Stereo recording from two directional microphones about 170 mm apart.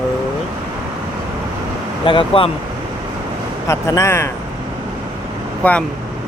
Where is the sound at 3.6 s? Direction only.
15° left (ahead or behind).